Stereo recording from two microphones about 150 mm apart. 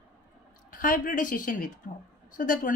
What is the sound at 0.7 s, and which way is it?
A woman's voice, 65° left (ahead or behind).